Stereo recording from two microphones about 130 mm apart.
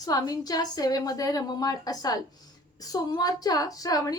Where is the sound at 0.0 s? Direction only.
30° left (ahead or behind).